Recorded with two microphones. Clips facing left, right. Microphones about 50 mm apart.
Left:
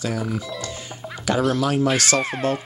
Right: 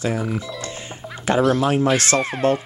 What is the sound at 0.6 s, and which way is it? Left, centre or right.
Music, right.